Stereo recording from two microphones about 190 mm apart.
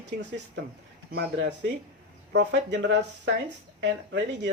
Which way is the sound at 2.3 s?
65° right (ahead or behind).